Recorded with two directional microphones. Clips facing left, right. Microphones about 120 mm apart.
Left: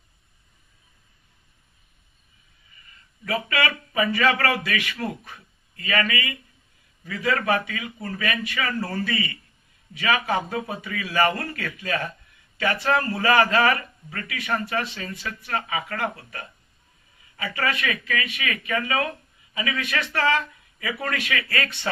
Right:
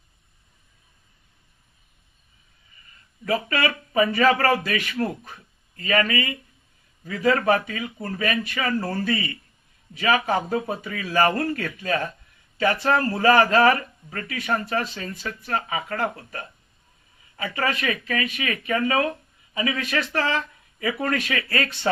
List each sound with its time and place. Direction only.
3.2 s a man's voice: 40° right (ahead or behind)